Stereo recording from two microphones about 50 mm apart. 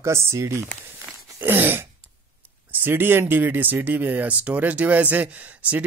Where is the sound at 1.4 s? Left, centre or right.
Right.